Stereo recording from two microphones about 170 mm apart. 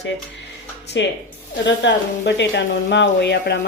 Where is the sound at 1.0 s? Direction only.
90° left.